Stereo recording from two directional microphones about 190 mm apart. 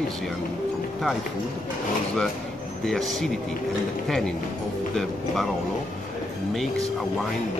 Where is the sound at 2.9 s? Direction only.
Centre (ahead or behind).